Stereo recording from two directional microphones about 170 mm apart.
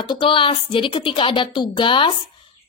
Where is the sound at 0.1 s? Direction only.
30° left (ahead or behind).